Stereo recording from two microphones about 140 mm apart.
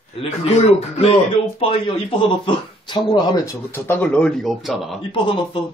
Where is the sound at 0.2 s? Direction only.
50° left (ahead or behind).